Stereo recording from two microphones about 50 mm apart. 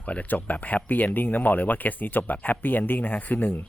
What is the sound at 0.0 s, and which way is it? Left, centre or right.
Speech, left.